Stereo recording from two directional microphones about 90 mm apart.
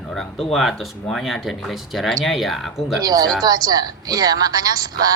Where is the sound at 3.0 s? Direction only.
45° right (ahead or behind).